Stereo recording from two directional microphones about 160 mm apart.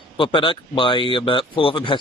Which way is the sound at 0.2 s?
30° left (ahead or behind).